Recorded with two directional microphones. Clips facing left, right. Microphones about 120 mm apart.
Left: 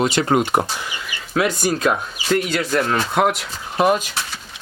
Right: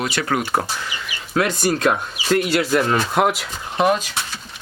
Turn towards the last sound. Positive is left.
turn(degrees=5)  # may be behind; listen again after turning